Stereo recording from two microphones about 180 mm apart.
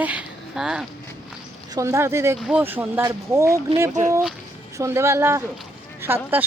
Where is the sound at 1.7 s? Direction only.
20° right (ahead or behind).